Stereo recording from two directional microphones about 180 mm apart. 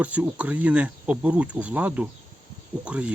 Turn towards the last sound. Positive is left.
turn(degrees=-5)  # may be behind; listen again after turning